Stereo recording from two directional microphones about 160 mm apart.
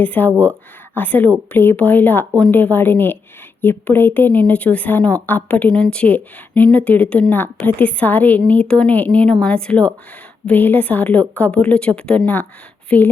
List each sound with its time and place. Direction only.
0.0 s a woman's voice: 10° left (ahead or behind)
0.3 s speech: 15° right (ahead or behind)
0.9 s a woman's voice: 10° left (ahead or behind)